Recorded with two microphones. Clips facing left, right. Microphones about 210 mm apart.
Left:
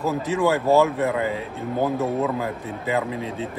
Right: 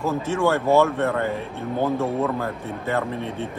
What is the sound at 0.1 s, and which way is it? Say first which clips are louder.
A man's voice: even; 15° left (ahead or behind).